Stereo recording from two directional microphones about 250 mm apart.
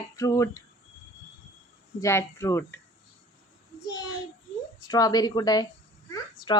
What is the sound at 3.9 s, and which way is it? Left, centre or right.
Child singing, centre.